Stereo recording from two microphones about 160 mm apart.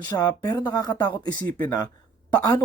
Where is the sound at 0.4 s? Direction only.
25° left (ahead or behind).